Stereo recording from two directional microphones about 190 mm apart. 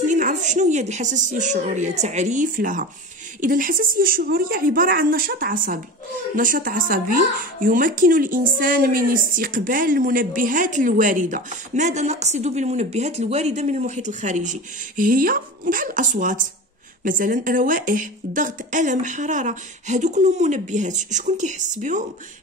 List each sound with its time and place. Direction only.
0.1 s a woman's voice: 40° right (ahead or behind)